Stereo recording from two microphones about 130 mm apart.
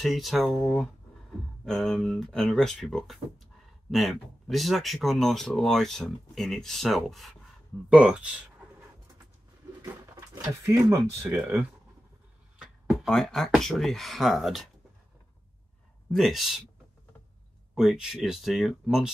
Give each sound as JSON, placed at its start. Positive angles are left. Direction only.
{"t": 0.0, "sound": "speech", "side_deg": 0}
{"t": 10.3, "sound": "speech", "side_deg": -25}
{"t": 11.3, "sound": "speech", "side_deg": -15}
{"t": 12.5, "sound": "speech", "side_deg": 0}
{"t": 16.1, "sound": "speech", "side_deg": 0}
{"t": 17.7, "sound": "speech", "side_deg": -5}